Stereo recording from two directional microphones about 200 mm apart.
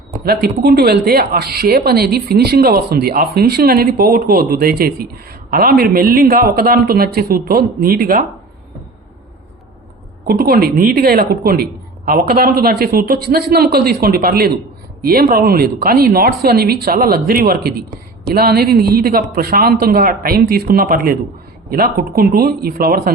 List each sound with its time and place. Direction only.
0.6 s a woman's voice: 50° right (ahead or behind)
10.2 s a woman's voice: 50° right (ahead or behind)